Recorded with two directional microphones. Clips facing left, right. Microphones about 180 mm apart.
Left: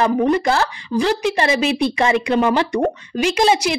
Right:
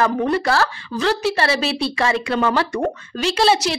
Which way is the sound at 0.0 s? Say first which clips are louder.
Left 3 dB; 20° left (ahead or behind).